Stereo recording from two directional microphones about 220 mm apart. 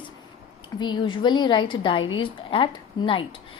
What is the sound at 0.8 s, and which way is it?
A woman's voice, 20° left (ahead or behind).